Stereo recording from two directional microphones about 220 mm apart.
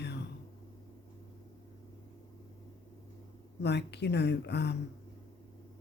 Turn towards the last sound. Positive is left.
turn(degrees=50)  # may be behind; listen again after turning